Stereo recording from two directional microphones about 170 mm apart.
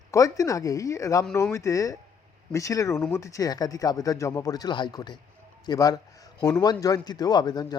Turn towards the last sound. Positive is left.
turn(degrees=25)  # may be behind; listen again after turning